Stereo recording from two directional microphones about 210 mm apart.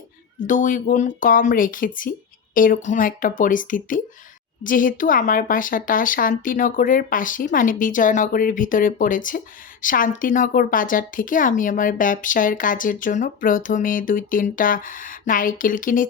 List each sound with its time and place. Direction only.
0.4 s a woman's voice: 40° left (ahead or behind)